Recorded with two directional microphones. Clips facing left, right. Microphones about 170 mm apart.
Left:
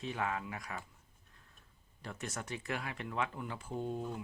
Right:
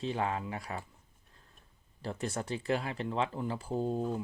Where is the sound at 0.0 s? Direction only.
30° right (ahead or behind).